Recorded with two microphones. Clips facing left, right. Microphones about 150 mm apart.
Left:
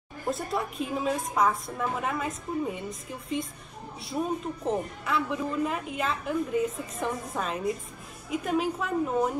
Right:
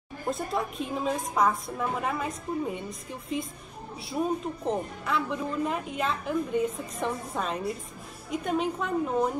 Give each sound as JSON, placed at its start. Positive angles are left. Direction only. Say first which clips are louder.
{"t": 0.3, "sound": "a woman's voice", "louder": "even", "side_deg": 0}